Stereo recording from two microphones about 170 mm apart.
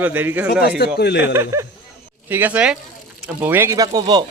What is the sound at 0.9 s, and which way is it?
Speech, 75° left (ahead or behind).